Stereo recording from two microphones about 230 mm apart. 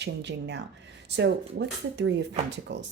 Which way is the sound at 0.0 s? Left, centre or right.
Right.